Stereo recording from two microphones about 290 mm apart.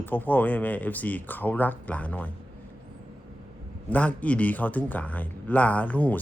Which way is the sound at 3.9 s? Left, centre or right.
Centre.